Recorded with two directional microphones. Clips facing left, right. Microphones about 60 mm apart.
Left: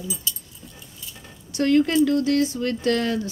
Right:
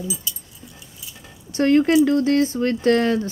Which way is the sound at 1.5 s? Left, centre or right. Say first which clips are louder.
Right 3 dB; right.